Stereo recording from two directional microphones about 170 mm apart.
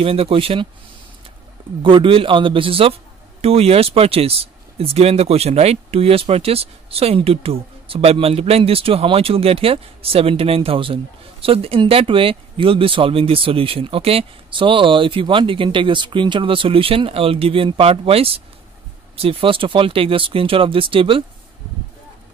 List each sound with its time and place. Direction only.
0.0 s a man's voice: 35° right (ahead or behind)
1.8 s a man's voice: 30° right (ahead or behind)